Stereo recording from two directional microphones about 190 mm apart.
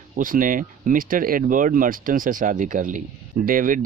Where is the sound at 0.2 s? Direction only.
45° right (ahead or behind).